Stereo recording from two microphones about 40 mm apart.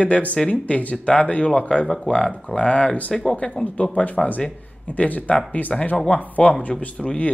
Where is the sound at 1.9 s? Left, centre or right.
Centre; by 3.1 s left.